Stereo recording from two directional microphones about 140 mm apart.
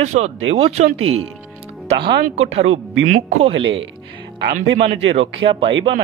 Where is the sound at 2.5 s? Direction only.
55° right (ahead or behind).